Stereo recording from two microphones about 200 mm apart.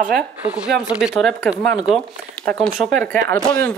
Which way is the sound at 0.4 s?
10° right (ahead or behind).